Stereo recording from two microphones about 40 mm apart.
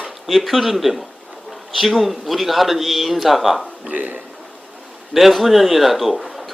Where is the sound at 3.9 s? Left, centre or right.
Right.